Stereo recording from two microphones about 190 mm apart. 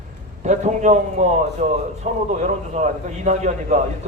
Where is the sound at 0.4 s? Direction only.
40° right (ahead or behind).